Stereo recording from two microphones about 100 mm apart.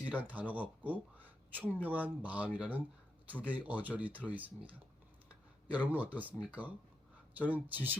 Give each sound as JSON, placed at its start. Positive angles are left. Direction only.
{"t": 0.1, "sound": "speech", "side_deg": -15}
{"t": 5.7, "sound": "speech", "side_deg": -15}